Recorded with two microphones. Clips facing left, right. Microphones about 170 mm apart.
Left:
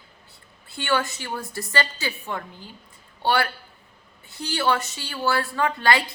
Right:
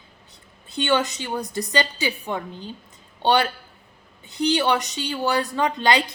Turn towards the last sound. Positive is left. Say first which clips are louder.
# right 1 dB
turn(degrees=-20)  # may be behind; listen again after turning